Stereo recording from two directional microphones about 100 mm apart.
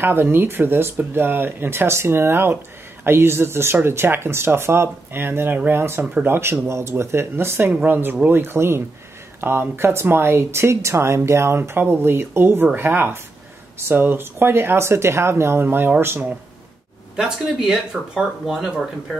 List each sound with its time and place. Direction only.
0.0 s speech: 20° right (ahead or behind)
17.2 s speech: 5° right (ahead or behind)